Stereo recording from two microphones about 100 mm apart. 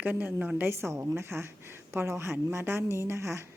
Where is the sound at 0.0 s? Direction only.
20° right (ahead or behind).